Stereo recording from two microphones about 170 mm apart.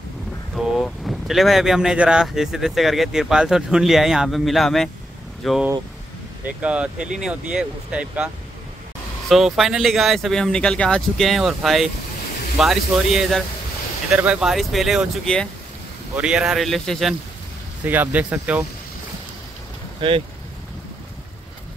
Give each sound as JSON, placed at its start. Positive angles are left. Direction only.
{"t": 0.7, "sound": "speech", "side_deg": 0}
{"t": 9.3, "sound": "speech", "side_deg": 0}
{"t": 17.8, "sound": "speech", "side_deg": -10}
{"t": 20.0, "sound": "speech", "side_deg": -30}